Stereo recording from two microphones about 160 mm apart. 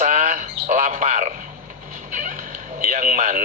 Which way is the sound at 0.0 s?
50° right (ahead or behind).